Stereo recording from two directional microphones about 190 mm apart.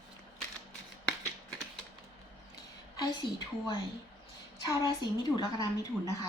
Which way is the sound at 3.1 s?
20° left (ahead or behind).